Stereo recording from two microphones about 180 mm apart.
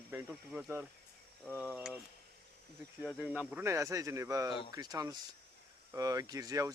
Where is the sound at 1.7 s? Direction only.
Centre (ahead or behind).